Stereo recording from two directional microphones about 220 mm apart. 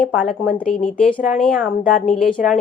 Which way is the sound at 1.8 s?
35° left (ahead or behind).